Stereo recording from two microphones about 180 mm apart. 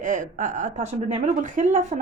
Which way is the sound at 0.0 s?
45° right (ahead or behind).